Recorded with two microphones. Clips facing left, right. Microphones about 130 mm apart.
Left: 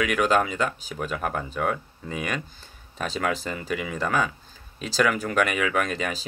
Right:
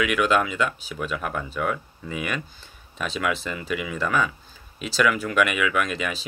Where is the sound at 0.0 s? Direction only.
35° left (ahead or behind).